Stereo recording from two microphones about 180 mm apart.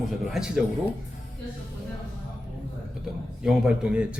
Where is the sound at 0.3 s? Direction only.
5° right (ahead or behind).